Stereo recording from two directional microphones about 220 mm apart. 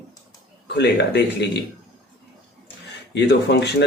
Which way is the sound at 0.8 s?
50° left (ahead or behind).